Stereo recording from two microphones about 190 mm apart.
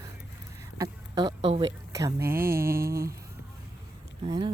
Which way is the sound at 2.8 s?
50° right (ahead or behind).